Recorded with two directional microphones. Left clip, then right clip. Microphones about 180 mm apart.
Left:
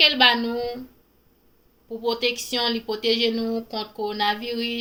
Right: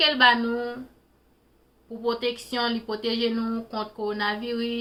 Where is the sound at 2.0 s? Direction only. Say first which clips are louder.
Left 3 dB; 15° right (ahead or behind).